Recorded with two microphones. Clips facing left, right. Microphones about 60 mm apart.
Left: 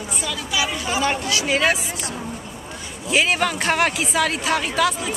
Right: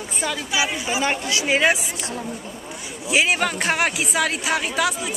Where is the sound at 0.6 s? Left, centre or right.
Centre.